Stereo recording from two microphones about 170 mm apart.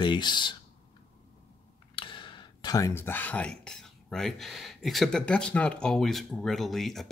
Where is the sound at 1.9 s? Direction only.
30° left (ahead or behind).